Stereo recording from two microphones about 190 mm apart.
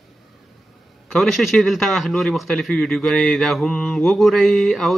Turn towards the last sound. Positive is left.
turn(degrees=0)  # may be behind; listen again after turning